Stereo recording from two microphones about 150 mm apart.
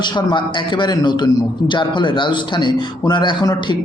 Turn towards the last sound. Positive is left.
turn(degrees=30)  # may be behind; listen again after turning